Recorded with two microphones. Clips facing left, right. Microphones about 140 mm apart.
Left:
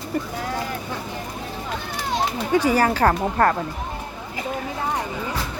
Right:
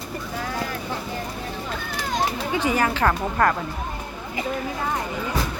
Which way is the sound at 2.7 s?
35° left (ahead or behind).